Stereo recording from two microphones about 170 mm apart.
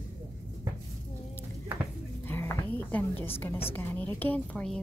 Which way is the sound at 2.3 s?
15° left (ahead or behind).